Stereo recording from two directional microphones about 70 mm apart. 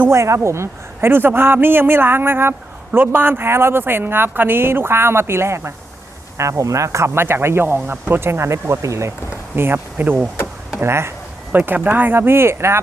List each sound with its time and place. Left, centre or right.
0.1 s speech: right
9.6 s speech: right
10.8 s speech: right
11.5 s speech: right